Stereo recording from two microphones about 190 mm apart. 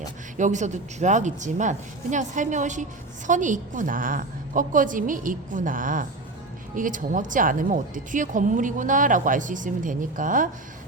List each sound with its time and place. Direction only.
0.3 s speech: 40° right (ahead or behind)